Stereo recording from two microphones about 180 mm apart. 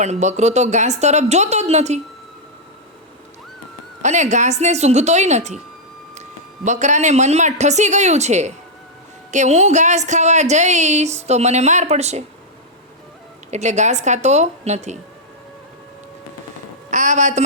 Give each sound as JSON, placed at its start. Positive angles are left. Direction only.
{"t": 0.0, "sound": "a woman's voice", "side_deg": -40}
{"t": 4.0, "sound": "a woman's voice", "side_deg": -40}
{"t": 6.7, "sound": "a woman's voice", "side_deg": -40}
{"t": 13.5, "sound": "a woman's voice", "side_deg": -40}
{"t": 16.9, "sound": "a woman's voice", "side_deg": -40}